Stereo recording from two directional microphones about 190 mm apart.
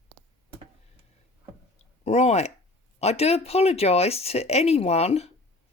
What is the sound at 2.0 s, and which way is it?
Speech, 35° left (ahead or behind).